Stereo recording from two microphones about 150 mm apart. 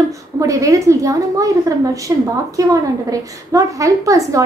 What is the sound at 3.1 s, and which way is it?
A woman's voice, 20° right (ahead or behind).